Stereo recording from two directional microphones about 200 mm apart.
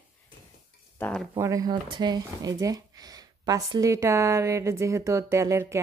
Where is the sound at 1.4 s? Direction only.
15° right (ahead or behind).